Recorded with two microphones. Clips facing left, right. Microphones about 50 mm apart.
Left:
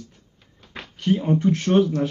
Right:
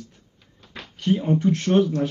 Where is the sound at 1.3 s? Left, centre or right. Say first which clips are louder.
Left 1 dB; left.